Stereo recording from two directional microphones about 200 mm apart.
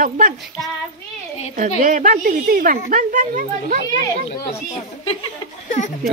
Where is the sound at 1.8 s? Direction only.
40° right (ahead or behind).